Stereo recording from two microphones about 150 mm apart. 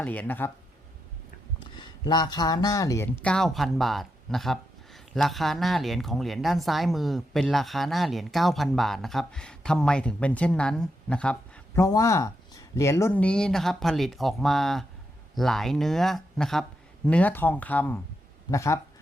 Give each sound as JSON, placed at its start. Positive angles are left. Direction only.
{"t": 0.0, "sound": "speech", "side_deg": 10}
{"t": 1.8, "sound": "speech", "side_deg": 30}
{"t": 3.1, "sound": "speech", "side_deg": 5}
{"t": 11.8, "sound": "speech", "side_deg": 20}